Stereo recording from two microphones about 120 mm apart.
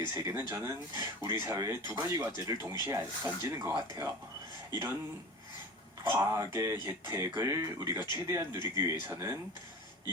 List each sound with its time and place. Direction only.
0.1 s speech: 25° right (ahead or behind)
3.8 s speech: 30° right (ahead or behind)
6.1 s speech: 20° right (ahead or behind)